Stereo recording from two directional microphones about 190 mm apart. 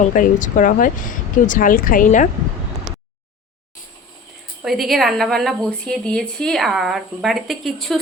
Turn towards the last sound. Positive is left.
turn(degrees=0)  # may be behind; listen again after turning